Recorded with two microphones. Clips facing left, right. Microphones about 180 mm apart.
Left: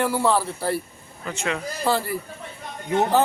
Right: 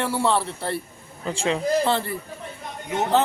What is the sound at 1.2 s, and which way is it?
Speech, 30° right (ahead or behind).